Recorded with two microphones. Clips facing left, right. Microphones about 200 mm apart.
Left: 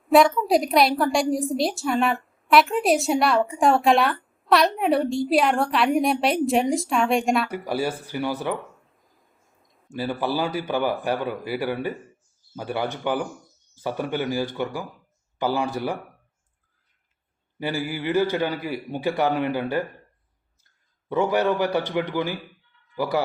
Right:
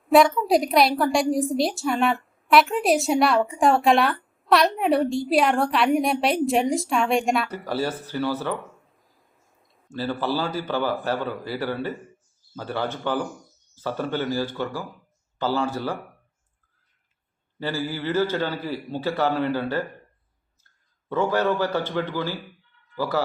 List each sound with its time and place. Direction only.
0.1 s a woman's voice: centre (ahead or behind)
7.5 s a man's voice: 10° left (ahead or behind)
9.9 s a man's voice: 15° left (ahead or behind)
17.6 s a man's voice: 15° left (ahead or behind)
21.1 s a man's voice: 15° left (ahead or behind)